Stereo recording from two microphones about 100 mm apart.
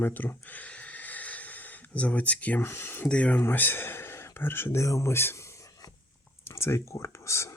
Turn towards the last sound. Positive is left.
turn(degrees=30)  # may be behind; listen again after turning